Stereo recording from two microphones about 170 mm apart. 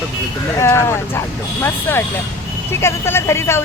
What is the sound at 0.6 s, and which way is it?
Speech, 15° left (ahead or behind).